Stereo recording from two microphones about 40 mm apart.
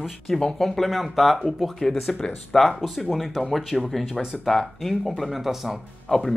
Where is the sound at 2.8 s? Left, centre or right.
Centre.